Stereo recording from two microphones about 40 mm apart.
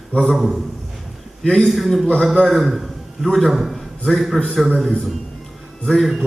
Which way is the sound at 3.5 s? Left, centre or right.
Centre.